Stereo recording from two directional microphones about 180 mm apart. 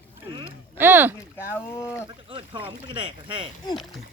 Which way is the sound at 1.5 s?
15° left (ahead or behind).